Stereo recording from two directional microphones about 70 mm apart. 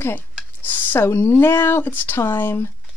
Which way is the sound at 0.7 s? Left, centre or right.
Left.